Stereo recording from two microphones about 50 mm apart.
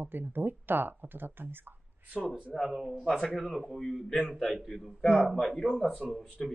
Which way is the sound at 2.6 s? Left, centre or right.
Centre.